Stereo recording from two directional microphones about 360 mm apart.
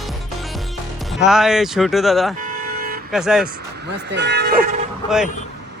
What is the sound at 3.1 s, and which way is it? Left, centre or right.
Speech, centre.